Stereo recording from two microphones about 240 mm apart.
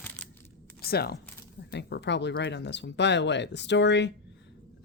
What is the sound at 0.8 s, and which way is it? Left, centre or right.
Speech, left.